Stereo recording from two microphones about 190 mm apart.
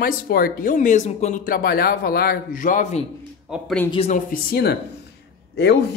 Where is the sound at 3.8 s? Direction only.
30° left (ahead or behind).